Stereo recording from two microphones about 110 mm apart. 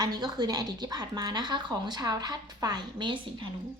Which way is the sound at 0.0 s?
40° right (ahead or behind).